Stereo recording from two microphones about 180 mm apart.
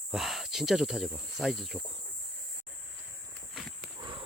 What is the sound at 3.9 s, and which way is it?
Horse, 25° right (ahead or behind).